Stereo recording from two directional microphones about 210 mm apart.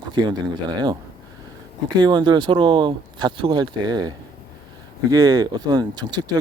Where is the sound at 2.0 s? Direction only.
20° right (ahead or behind).